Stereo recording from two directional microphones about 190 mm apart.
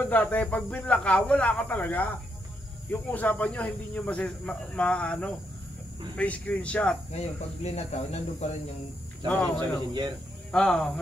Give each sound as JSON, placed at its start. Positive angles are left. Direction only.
{"t": 0.0, "sound": "speech", "side_deg": 10}
{"t": 7.1, "sound": "speech", "side_deg": 35}
{"t": 9.6, "sound": "speech", "side_deg": -25}
{"t": 10.5, "sound": "speech", "side_deg": 5}